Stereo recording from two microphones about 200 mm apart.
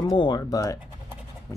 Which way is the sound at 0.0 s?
20° left (ahead or behind).